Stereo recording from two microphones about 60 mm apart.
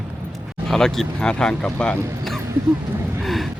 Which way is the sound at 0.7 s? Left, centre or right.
Centre.